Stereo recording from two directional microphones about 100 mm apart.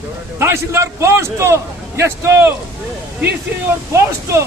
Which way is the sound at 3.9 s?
30° right (ahead or behind).